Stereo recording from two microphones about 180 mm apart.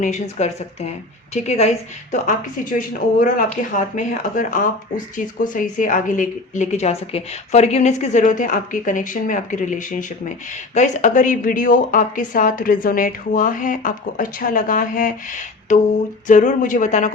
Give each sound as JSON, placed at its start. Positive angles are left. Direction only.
{"t": 0.0, "sound": "a woman's voice", "side_deg": 40}